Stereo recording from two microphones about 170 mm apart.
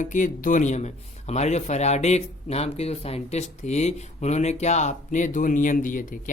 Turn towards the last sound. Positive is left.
turn(degrees=50)  # may be behind; listen again after turning